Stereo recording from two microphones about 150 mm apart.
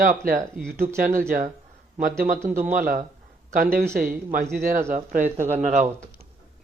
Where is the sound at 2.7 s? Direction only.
70° right (ahead or behind).